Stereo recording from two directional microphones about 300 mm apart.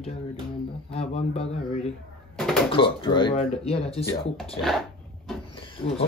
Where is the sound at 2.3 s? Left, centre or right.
Centre.